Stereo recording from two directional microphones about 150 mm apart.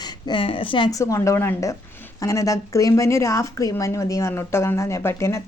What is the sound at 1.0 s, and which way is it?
A woman's voice, 20° left (ahead or behind).